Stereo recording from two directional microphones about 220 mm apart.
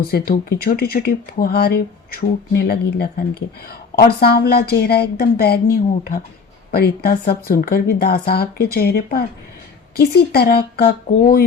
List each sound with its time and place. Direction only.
0.0 s speech: 45° left (ahead or behind)
6.7 s speech: 45° left (ahead or behind)